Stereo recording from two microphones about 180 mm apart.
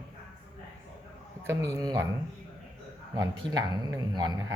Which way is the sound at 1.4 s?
15° right (ahead or behind).